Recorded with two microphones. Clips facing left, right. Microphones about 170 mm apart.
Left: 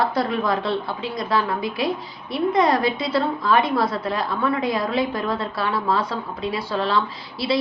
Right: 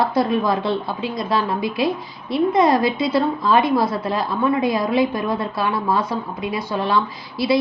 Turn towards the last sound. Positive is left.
turn(degrees=-20)  # may be behind; listen again after turning